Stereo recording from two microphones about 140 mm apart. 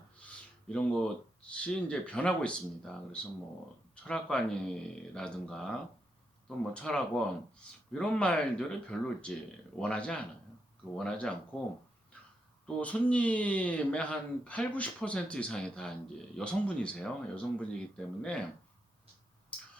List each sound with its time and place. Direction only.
0.7 s speech: 5° left (ahead or behind)
12.6 s speech: 10° left (ahead or behind)
19.5 s a sound: 10° left (ahead or behind)